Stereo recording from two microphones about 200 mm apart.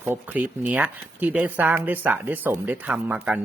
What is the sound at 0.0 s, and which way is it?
Speech, 10° right (ahead or behind).